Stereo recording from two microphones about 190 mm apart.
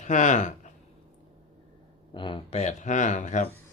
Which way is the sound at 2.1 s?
25° left (ahead or behind).